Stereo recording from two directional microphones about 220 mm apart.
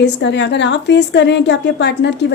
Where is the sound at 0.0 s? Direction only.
50° left (ahead or behind).